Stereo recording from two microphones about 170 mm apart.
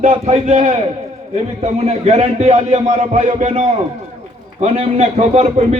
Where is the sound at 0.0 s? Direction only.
40° right (ahead or behind).